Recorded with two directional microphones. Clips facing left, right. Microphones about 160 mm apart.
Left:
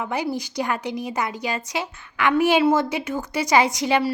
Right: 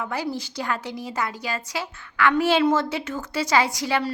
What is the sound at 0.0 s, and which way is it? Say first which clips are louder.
A woman's voice: left 2 dB; 20° left (ahead or behind).